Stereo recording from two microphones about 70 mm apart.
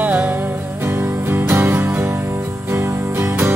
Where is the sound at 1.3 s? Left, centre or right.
Right.